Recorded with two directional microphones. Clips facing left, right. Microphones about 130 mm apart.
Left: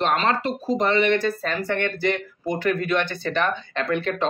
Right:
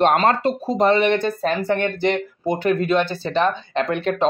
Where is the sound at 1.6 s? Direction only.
20° right (ahead or behind).